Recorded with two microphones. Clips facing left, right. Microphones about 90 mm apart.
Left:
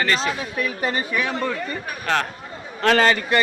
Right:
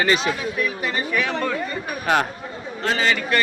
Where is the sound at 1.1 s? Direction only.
5° left (ahead or behind).